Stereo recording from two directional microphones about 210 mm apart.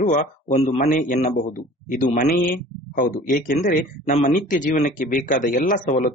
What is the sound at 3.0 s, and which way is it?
Speech, 40° left (ahead or behind).